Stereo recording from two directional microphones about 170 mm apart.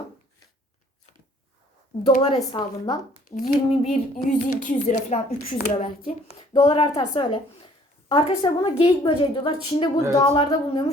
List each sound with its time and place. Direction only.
2.0 s a woman's voice: 30° left (ahead or behind)
3.2 s a sound: 40° left (ahead or behind)
5.8 s a woman's voice: 35° left (ahead or behind)
6.5 s a woman's voice: 25° left (ahead or behind)